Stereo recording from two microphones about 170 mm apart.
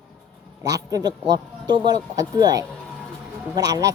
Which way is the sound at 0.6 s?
20° right (ahead or behind).